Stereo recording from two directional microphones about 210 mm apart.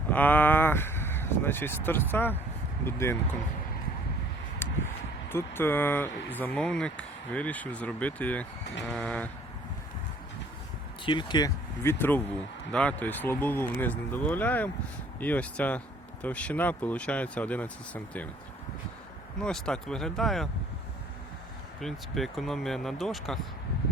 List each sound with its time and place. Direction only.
0.1 s speech: 10° left (ahead or behind)
4.6 s a sound: 10° left (ahead or behind)
5.3 s speech: 10° left (ahead or behind)
11.0 s speech: 20° left (ahead or behind)
19.4 s speech: 5° left (ahead or behind)
21.8 s speech: centre (ahead or behind)